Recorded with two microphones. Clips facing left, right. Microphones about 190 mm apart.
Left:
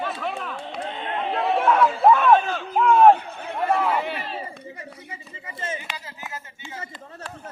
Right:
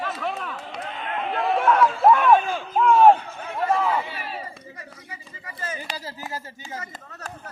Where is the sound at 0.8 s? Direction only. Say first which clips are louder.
Left 2 dB; 30° left (ahead or behind).